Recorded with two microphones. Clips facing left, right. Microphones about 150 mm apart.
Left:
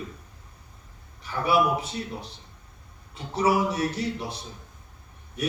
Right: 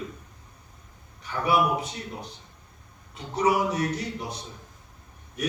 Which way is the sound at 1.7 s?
30° left (ahead or behind).